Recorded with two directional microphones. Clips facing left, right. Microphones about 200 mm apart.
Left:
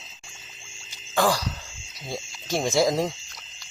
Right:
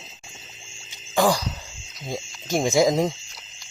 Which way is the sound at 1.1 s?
15° right (ahead or behind).